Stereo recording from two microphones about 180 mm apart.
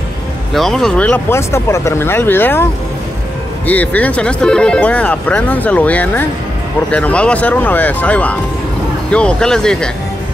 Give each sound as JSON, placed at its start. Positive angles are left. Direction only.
{"t": 0.5, "sound": "speech", "side_deg": 0}
{"t": 3.6, "sound": "speech", "side_deg": 10}